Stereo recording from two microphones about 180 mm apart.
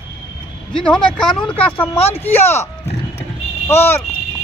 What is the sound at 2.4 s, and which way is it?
Speech, 15° left (ahead or behind).